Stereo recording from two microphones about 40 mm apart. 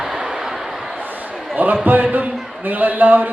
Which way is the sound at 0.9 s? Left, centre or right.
Right.